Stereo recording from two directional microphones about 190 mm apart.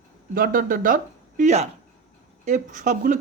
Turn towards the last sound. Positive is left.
turn(degrees=-40)  # may be behind; listen again after turning